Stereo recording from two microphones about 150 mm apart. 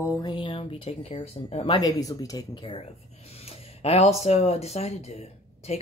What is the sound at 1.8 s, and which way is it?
Speech, 25° left (ahead or behind).